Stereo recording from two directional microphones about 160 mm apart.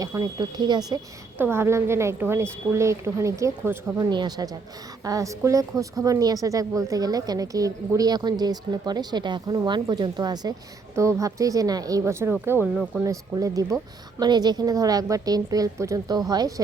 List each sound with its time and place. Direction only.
0.0 s a woman's voice: 20° right (ahead or behind)
1.4 s a woman's voice: 15° right (ahead or behind)
4.1 s a woman's voice: 25° right (ahead or behind); by 13.1 s 10° right (ahead or behind)
13.1 s a woman's voice: 20° right (ahead or behind)